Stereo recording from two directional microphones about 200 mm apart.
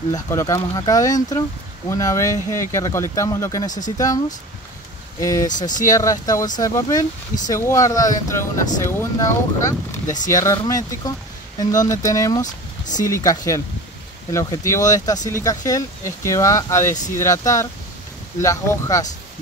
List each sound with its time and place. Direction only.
0.1 s speech: 15° left (ahead or behind)
3.6 s speech: 40° left (ahead or behind)
5.2 s speech: 15° left (ahead or behind)
5.5 s speech: 40° left (ahead or behind)
5.9 s speech: 15° left (ahead or behind)